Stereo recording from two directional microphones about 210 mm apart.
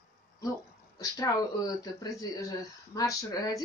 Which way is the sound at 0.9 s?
15° left (ahead or behind).